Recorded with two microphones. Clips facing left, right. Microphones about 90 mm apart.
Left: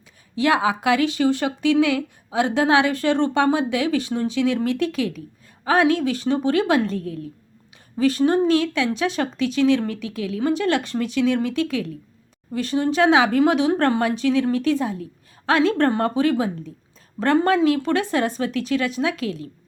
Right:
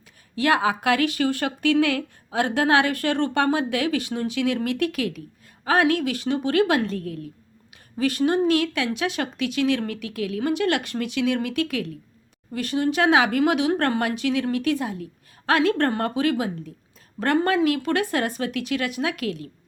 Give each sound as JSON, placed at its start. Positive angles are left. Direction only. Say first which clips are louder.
{"t": 0.3, "sound": "speech", "louder": "left 2 dB", "side_deg": 20}